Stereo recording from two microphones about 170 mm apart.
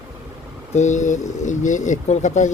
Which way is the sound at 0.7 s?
45° left (ahead or behind).